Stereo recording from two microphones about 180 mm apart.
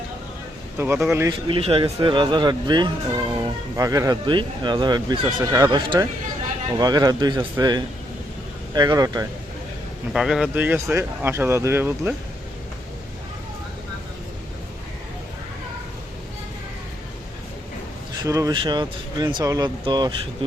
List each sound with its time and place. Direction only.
0.8 s speech: 10° right (ahead or behind)
1.3 s speech: 30° right (ahead or behind)
10.1 s speech: centre (ahead or behind)
18.2 s speech: 20° right (ahead or behind)